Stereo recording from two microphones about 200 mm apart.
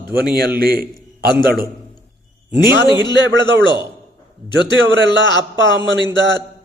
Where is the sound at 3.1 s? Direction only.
65° right (ahead or behind).